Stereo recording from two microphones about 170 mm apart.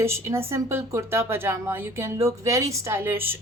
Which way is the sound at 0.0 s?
15° right (ahead or behind).